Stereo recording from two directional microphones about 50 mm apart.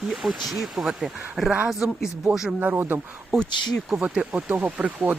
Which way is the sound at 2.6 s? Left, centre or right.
Right.